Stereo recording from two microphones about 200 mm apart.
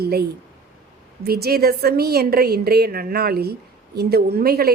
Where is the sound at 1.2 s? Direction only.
50° right (ahead or behind).